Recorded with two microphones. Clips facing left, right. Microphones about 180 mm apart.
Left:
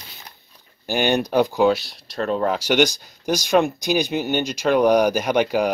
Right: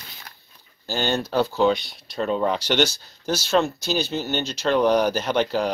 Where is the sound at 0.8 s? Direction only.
15° left (ahead or behind).